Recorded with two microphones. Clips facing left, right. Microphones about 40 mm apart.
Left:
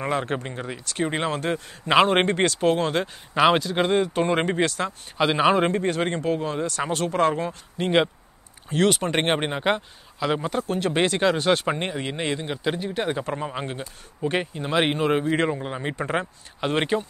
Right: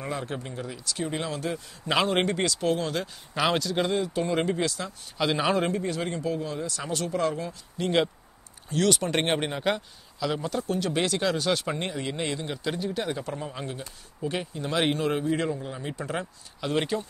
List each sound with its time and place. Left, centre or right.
0.0 s speech: left
5.1 s speech: left
5.7 s speech: left
14.6 s speech: left